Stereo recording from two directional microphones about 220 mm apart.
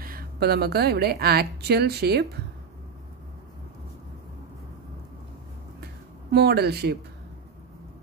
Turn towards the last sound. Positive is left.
turn(degrees=-45)  # may be behind; listen again after turning